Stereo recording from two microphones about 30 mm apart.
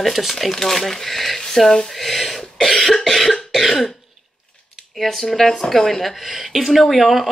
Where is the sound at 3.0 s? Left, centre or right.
Centre.